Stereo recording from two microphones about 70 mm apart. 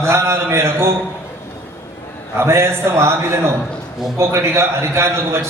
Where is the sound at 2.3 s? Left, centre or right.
Right.